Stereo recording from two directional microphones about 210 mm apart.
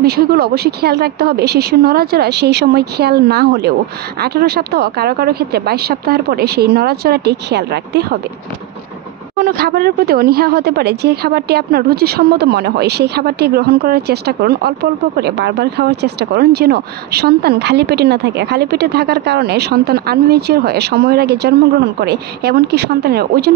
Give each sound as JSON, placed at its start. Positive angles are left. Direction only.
{"t": 0.0, "sound": "speech", "side_deg": -50}
{"t": 9.4, "sound": "speech", "side_deg": -45}